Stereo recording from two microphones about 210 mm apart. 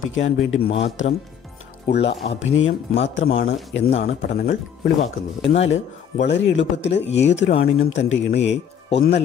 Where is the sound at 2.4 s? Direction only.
65° left (ahead or behind).